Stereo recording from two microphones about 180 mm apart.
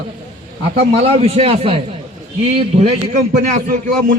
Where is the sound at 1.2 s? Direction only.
35° right (ahead or behind).